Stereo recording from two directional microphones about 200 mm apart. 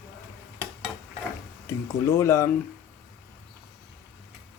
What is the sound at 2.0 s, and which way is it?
Speech, 15° left (ahead or behind).